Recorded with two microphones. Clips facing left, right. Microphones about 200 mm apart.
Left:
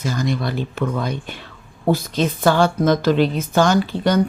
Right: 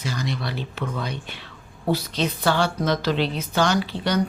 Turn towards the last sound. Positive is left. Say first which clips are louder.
# left 6 dB
turn(degrees=50)  # may be behind; listen again after turning